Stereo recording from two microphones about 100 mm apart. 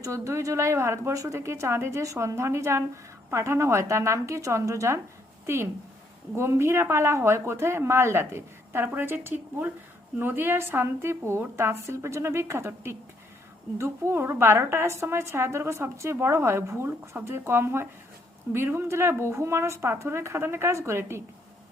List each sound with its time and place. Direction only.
0.0 s speech: 30° right (ahead or behind)
6.3 s speech: 25° right (ahead or behind)